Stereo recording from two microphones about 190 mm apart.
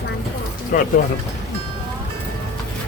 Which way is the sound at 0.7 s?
45° left (ahead or behind).